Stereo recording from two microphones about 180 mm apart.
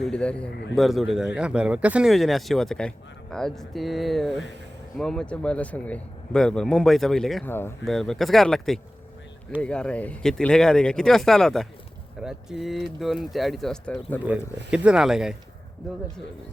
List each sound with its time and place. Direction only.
0.0 s speech: 5° left (ahead or behind)
14.3 s speech: 5° right (ahead or behind)